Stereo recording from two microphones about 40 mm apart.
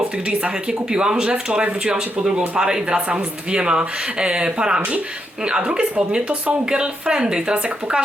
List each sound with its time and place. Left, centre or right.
0.3 s speech: right